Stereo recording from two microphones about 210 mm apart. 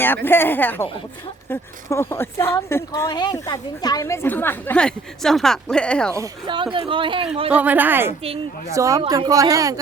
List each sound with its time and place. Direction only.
0.3 s a woman's voice: 10° left (ahead or behind)
6.1 s speech: 20° right (ahead or behind)
7.5 s speech: 10° right (ahead or behind)